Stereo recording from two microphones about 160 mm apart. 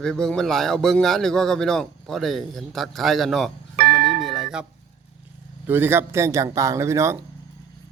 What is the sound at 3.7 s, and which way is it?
Tubular bells, 75° right (ahead or behind).